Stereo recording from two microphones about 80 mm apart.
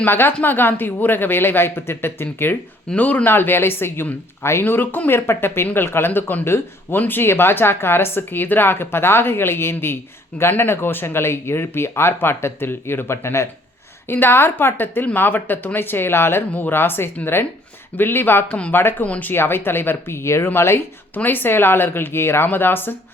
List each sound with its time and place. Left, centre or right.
0.0 s speech: left
18.4 s speech: centre
18.7 s speech: left
19.0 s speech: centre
19.3 s speech: left